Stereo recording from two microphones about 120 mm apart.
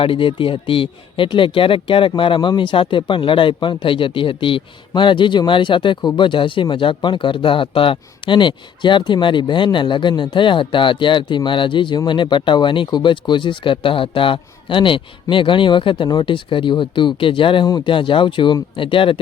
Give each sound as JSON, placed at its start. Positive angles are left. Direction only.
{"t": 0.0, "sound": "speech", "side_deg": 45}